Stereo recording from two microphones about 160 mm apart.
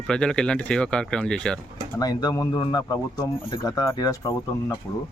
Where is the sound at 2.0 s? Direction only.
20° left (ahead or behind).